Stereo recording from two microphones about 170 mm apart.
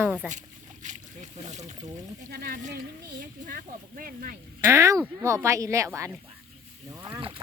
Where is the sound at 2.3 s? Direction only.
60° right (ahead or behind).